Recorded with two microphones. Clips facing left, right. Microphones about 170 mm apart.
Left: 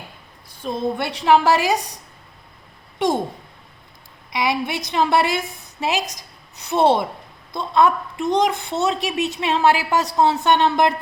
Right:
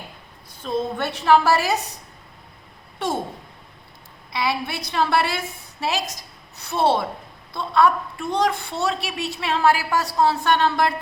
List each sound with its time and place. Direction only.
0.6 s a woman's voice: 10° left (ahead or behind)
4.3 s a woman's voice: 15° left (ahead or behind)